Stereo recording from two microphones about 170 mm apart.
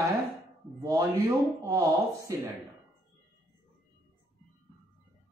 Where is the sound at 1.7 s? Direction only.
15° right (ahead or behind).